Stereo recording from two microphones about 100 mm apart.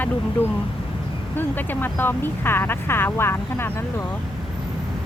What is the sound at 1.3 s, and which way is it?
Speech, 20° left (ahead or behind).